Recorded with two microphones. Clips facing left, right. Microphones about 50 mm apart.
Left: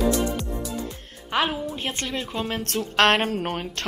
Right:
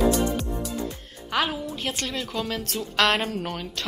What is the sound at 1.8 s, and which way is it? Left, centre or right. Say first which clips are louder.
Speech: left 1 dB; left.